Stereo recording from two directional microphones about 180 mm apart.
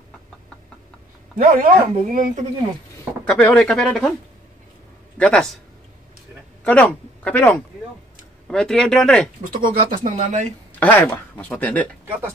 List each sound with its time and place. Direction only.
1.4 s speech: 50° right (ahead or behind)
3.3 s speech: 5° left (ahead or behind)
5.1 s a man's voice: 5° left (ahead or behind)
6.6 s speech: 10° left (ahead or behind)
9.4 s speech: 50° right (ahead or behind)
10.8 s speech: 10° left (ahead or behind)